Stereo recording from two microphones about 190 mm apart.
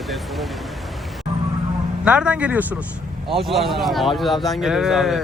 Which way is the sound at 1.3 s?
30° right (ahead or behind).